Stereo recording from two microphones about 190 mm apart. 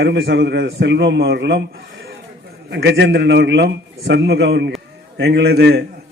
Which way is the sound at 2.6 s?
65° right (ahead or behind).